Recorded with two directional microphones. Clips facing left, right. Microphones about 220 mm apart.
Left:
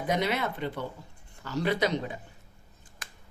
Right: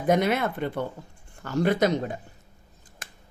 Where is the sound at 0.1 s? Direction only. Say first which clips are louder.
Right 6 dB; 50° right (ahead or behind).